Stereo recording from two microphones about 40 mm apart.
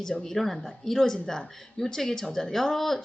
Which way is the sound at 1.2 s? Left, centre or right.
Centre.